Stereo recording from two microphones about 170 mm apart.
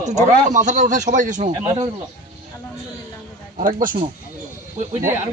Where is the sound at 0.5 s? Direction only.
45° right (ahead or behind).